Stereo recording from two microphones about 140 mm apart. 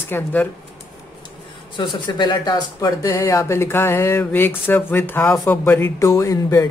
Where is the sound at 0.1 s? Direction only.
10° left (ahead or behind).